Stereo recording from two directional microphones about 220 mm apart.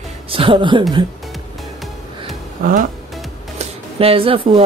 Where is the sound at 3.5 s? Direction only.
25° right (ahead or behind).